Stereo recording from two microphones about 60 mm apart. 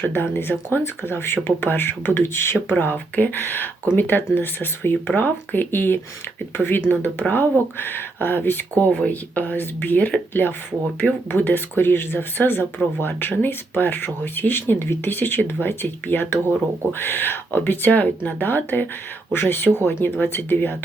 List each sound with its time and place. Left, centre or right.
0.1 s speech: left
2.7 s speech: left
8.7 s speech: centre; by 20.7 s left